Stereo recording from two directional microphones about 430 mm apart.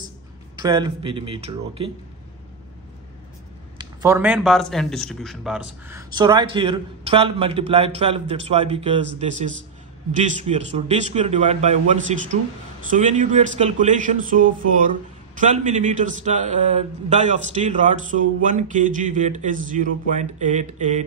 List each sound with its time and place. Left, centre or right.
0.6 s a man's voice: centre
3.7 s a man's voice: centre